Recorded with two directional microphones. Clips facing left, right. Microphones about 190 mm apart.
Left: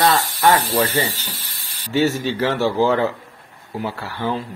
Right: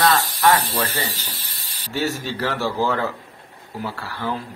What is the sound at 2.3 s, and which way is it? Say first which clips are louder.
Speech: left 5 dB; 20° left (ahead or behind).